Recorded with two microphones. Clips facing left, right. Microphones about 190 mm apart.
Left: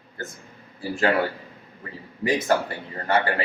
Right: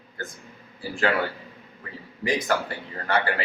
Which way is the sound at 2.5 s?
25° left (ahead or behind).